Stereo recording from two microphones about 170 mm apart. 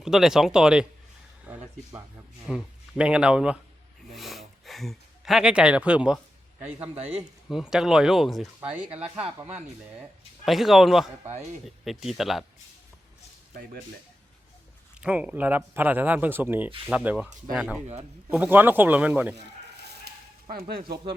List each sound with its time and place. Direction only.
0.0 s speech: 5° right (ahead or behind)
1.5 s a sound: 10° right (ahead or behind)
2.5 s speech: centre (ahead or behind)
4.1 s a sound: centre (ahead or behind)
7.1 s speech: 5° right (ahead or behind)
10.4 s speech: centre (ahead or behind)
15.0 s speech: 10° right (ahead or behind)
20.5 s speech: 60° right (ahead or behind)
20.8 s speech: 30° right (ahead or behind)